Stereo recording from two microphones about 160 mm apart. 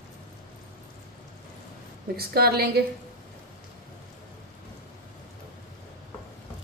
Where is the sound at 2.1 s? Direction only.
75° right (ahead or behind).